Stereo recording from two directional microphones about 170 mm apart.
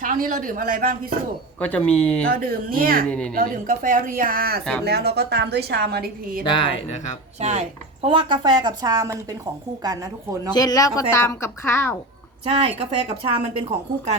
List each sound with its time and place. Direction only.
0.0 s speech: 50° right (ahead or behind)
1.5 s speech: 10° left (ahead or behind)
2.2 s a woman's voice: 60° right (ahead or behind)
3.1 s speech: 5° left (ahead or behind)
3.3 s a woman's voice: 55° right (ahead or behind)
6.4 s a woman's voice: 30° left (ahead or behind)
7.3 s a woman's voice: 40° right (ahead or behind)
8.0 s speech: 30° right (ahead or behind)
10.5 s a woman's voice: 20° left (ahead or behind)
12.5 s a woman's voice: 35° right (ahead or behind)